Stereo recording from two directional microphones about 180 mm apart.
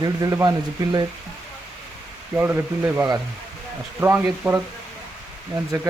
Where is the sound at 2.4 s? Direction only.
10° right (ahead or behind).